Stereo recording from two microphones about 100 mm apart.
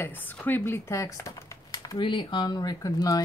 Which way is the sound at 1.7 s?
40° left (ahead or behind).